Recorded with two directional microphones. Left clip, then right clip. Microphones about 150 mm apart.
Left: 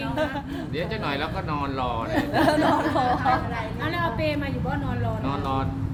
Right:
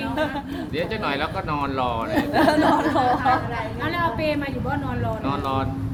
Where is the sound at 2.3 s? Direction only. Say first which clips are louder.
Right 3 dB; 10° left (ahead or behind).